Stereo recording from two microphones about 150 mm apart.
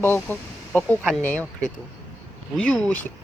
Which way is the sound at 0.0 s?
15° left (ahead or behind).